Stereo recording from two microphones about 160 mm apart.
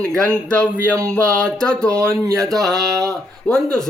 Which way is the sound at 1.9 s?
15° right (ahead or behind).